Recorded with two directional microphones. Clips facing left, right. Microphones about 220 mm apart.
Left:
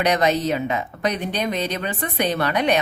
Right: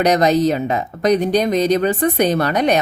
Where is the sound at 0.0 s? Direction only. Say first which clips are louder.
Right 5 dB; 40° right (ahead or behind).